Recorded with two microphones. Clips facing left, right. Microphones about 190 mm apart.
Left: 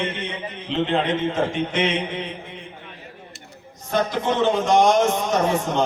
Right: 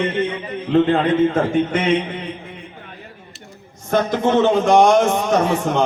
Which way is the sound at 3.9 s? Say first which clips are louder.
Right 5 dB; 50° right (ahead or behind).